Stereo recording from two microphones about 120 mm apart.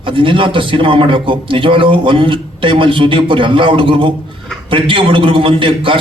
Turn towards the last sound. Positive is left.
turn(degrees=-45)  # may be behind; listen again after turning